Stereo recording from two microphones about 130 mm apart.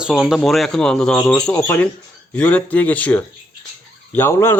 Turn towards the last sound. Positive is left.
turn(degrees=20)  # may be behind; listen again after turning